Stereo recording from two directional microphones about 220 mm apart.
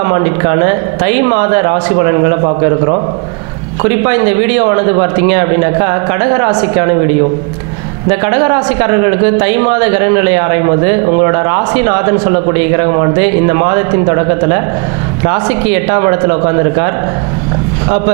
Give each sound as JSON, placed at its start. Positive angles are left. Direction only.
{"t": 0.0, "sound": "a man's voice", "side_deg": -20}
{"t": 8.2, "sound": "a man's voice", "side_deg": -20}